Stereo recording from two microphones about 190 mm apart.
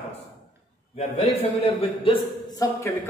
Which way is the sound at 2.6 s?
15° left (ahead or behind).